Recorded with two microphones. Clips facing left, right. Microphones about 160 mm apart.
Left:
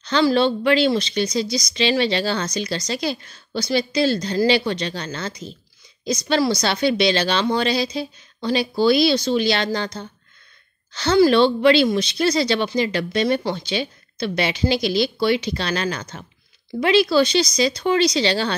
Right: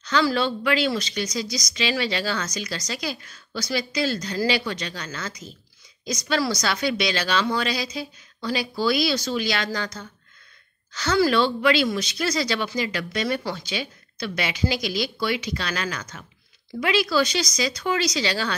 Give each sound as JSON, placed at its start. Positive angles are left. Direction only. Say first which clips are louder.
{"t": 0.0, "sound": "a woman's voice", "louder": "left 5 dB", "side_deg": 25}